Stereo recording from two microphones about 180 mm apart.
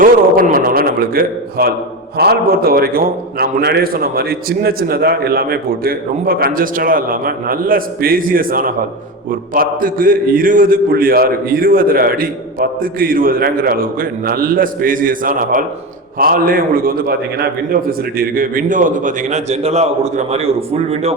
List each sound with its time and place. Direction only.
0.0 s a man's voice: 50° right (ahead or behind); by 21.2 s 35° right (ahead or behind)